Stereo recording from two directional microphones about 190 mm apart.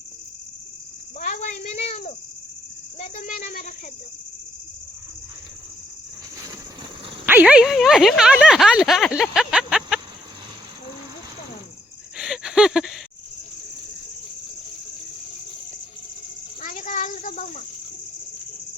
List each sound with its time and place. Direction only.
1.2 s speech: 40° left (ahead or behind)
3.0 s speech: 45° left (ahead or behind)
7.3 s speech: 5° right (ahead or behind)
12.1 s gasp: 5° right (ahead or behind)
16.6 s a sound: 45° left (ahead or behind)